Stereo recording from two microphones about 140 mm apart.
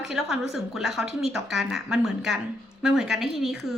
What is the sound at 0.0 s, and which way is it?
A woman's voice, centre (ahead or behind).